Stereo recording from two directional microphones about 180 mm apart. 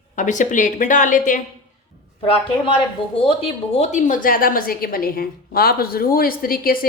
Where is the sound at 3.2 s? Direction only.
35° left (ahead or behind); by 6.9 s 55° left (ahead or behind).